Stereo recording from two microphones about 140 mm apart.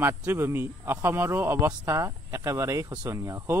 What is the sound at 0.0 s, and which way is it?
Speech, 15° right (ahead or behind).